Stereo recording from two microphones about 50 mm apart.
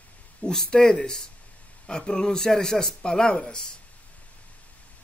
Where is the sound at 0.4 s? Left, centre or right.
Centre.